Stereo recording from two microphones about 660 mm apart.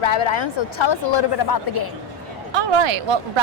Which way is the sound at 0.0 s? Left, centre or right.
Left.